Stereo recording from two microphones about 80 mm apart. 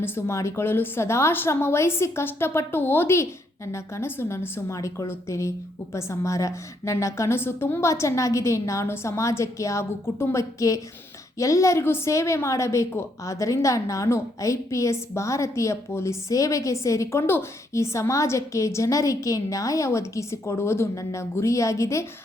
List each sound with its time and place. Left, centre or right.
0.0 s a woman's voice: left
4.7 s a woman's voice: left